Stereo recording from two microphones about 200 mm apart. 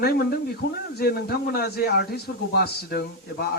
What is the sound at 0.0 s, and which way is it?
A man's voice, 50° left (ahead or behind).